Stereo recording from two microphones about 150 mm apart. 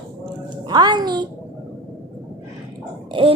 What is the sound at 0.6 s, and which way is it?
Speech, 30° right (ahead or behind).